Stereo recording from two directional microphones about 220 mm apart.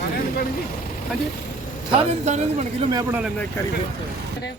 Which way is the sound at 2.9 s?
15° right (ahead or behind).